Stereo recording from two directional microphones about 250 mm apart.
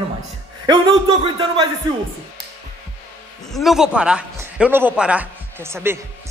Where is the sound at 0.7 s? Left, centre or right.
Centre.